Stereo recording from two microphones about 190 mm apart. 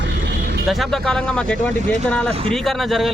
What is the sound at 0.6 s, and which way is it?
Speech, centre (ahead or behind).